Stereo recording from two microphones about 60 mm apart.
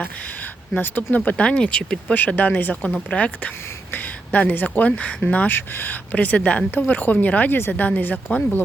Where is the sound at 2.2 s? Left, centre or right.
Left.